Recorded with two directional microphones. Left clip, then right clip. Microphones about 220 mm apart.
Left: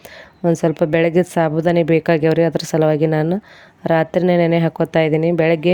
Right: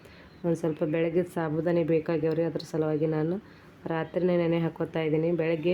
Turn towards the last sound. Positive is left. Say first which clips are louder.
# left 11 dB
turn(degrees=40)  # may be behind; listen again after turning